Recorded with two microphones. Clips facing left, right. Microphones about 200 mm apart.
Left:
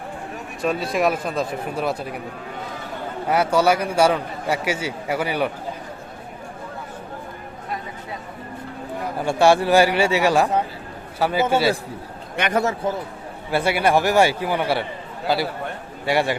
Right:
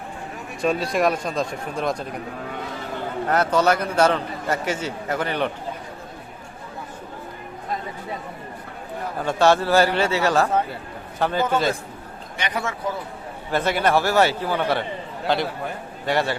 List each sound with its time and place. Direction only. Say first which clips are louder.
0.6 s speech: even; centre (ahead or behind)
3.2 s a man's voice: left 1 dB; 10° left (ahead or behind)
9.2 s a man's voice: left 2 dB; 10° left (ahead or behind)
12.4 s a man's voice: left 6 dB; 45° left (ahead or behind)
13.5 s a man's voice: left 1 dB; 10° left (ahead or behind)
16.1 s a man's voice: left 2 dB; 15° left (ahead or behind)